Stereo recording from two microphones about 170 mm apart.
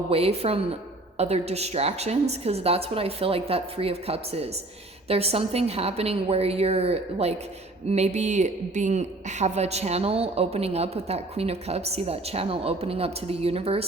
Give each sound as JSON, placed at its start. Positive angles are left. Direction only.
{"t": 0.1, "sound": "a woman's voice", "side_deg": -35}